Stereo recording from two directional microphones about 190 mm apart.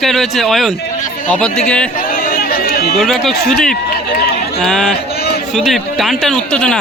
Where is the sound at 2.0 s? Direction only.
50° left (ahead or behind).